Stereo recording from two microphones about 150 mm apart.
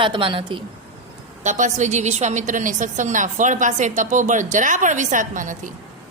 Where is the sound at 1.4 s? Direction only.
55° right (ahead or behind).